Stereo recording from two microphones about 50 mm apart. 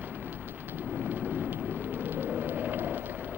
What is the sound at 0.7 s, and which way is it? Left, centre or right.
Vehicle, right.